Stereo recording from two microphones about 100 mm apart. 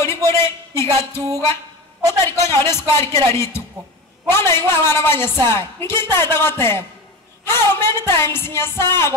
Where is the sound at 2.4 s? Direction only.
25° left (ahead or behind).